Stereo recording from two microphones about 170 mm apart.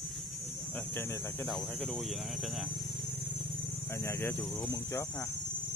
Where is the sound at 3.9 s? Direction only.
15° left (ahead or behind).